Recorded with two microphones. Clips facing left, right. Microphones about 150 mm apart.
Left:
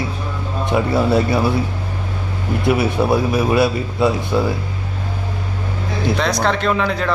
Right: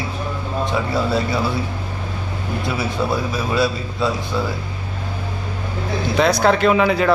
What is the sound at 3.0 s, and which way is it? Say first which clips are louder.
A man's voice: left 5 dB; 20° left (ahead or behind).